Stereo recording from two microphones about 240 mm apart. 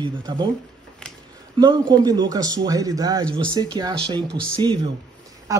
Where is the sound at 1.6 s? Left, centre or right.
Centre.